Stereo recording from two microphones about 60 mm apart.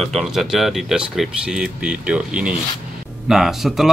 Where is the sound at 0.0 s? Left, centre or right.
Centre.